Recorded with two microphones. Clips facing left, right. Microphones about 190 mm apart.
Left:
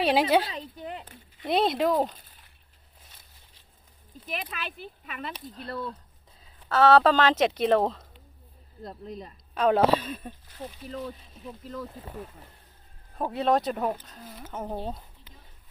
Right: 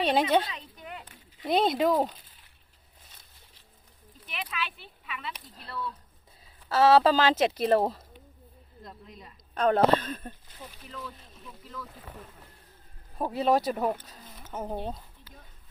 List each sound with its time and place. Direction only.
0.0 s speech: 5° left (ahead or behind)
0.4 s a sound: 30° left (ahead or behind)
1.4 s speech: centre (ahead or behind)
4.3 s speech: 45° left (ahead or behind)
6.7 s speech: 5° right (ahead or behind)
8.8 s speech: 35° left (ahead or behind)
9.6 s speech: 5° left (ahead or behind)
10.8 s speech: 35° left (ahead or behind)
13.3 s speech: 5° right (ahead or behind)